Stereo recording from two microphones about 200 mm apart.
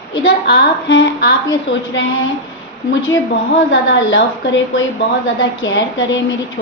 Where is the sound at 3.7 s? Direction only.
70° left (ahead or behind).